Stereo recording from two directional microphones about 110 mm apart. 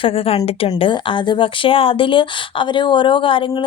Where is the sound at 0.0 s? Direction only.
55° left (ahead or behind).